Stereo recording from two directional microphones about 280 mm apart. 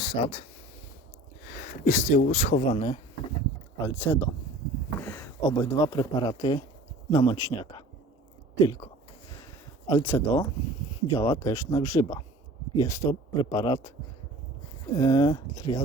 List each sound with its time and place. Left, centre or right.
0.0 s speech: centre
1.8 s a man's voice: left
3.8 s speech: centre
14.9 s speech: centre